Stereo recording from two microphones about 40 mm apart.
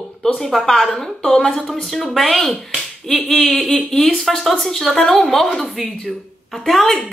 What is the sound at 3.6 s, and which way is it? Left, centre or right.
Speech, left.